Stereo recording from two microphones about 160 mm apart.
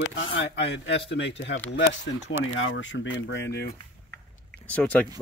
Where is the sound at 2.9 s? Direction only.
90° left.